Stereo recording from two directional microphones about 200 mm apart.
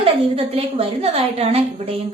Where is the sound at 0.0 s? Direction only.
30° right (ahead or behind).